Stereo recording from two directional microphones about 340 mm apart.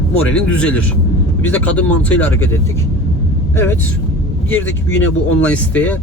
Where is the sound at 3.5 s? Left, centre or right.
Centre.